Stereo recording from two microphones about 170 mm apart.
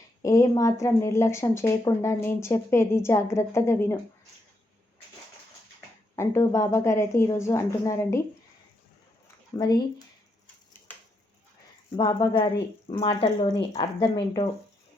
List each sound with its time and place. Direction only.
0.2 s speech: 20° left (ahead or behind)
6.1 s speech: 15° left (ahead or behind)
9.6 s a woman's voice: 20° left (ahead or behind)
11.9 s a woman's voice: 25° left (ahead or behind)